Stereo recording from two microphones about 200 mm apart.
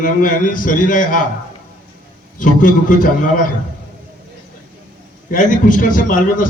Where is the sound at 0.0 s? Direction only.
40° left (ahead or behind).